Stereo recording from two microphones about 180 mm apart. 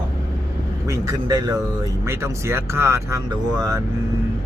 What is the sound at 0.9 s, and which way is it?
Speech, 20° right (ahead or behind).